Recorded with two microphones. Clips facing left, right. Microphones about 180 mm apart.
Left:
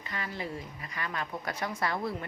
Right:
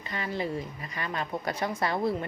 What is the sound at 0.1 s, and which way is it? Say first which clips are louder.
A woman's voice: right 6 dB; 25° right (ahead or behind).